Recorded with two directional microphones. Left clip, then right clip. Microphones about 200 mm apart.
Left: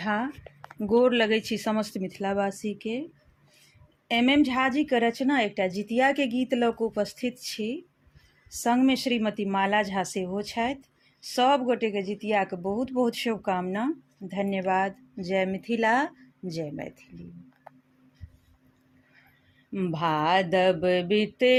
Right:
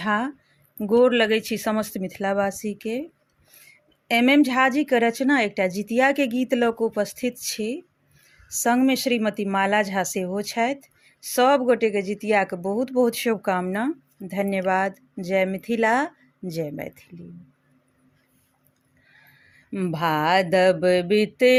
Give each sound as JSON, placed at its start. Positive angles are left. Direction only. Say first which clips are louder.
{"t": 0.0, "sound": "speech", "louder": "right 5 dB", "side_deg": -15}
{"t": 4.1, "sound": "speech", "louder": "right 4 dB", "side_deg": -20}
{"t": 19.7, "sound": "speech", "louder": "right 3 dB", "side_deg": -15}